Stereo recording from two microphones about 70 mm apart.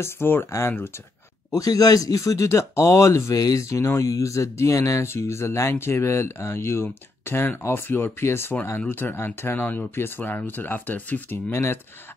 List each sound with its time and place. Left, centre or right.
0.0 s speech: left
1.5 s speech: left
11.5 s speech: left